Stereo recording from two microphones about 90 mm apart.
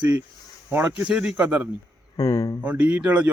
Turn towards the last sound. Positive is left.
turn(degrees=-15)  # may be behind; listen again after turning